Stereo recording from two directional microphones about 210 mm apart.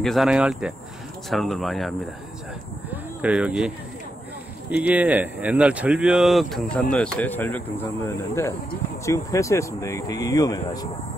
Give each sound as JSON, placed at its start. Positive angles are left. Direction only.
{"t": 0.0, "sound": "speech", "side_deg": 0}
{"t": 2.9, "sound": "a sound", "side_deg": -5}
{"t": 4.6, "sound": "speech", "side_deg": -5}